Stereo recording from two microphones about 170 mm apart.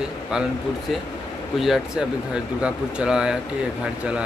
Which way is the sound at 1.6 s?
5° right (ahead or behind).